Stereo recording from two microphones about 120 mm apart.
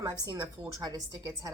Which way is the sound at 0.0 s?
30° right (ahead or behind).